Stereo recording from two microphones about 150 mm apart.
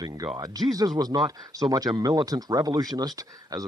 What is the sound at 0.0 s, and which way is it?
Speech, 25° right (ahead or behind).